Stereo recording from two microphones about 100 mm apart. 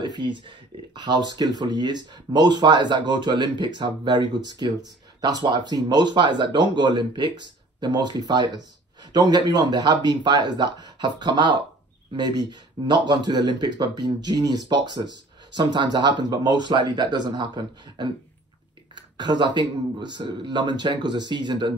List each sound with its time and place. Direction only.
0.0 s speech: 45° right (ahead or behind)